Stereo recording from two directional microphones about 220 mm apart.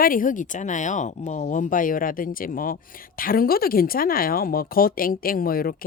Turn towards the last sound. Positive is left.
turn(degrees=40)  # may be behind; listen again after turning